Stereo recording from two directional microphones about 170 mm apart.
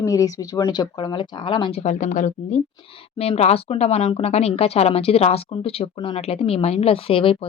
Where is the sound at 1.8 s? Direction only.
45° left (ahead or behind).